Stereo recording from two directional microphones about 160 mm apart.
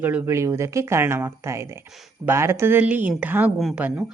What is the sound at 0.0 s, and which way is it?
A woman's voice, 10° right (ahead or behind).